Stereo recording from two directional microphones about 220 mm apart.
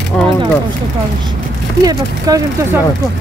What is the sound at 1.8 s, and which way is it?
Speech, 15° right (ahead or behind).